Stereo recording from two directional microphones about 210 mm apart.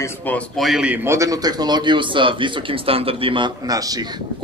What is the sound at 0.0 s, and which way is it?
A man's voice, 10° left (ahead or behind).